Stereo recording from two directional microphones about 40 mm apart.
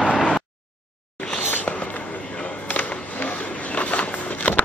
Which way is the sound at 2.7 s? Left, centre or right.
Left.